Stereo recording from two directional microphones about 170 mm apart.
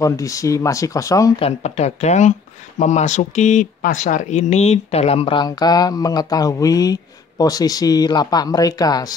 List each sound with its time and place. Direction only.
0.0 s speech: 20° left (ahead or behind)
1.4 s speech: 40° left (ahead or behind); by 9.1 s 20° left (ahead or behind)